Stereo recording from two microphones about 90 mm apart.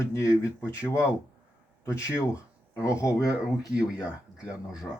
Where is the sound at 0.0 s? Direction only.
35° left (ahead or behind).